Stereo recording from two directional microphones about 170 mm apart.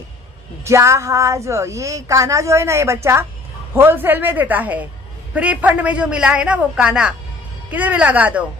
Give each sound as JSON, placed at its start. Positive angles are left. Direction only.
{"t": 0.7, "sound": "a woman's voice", "side_deg": -15}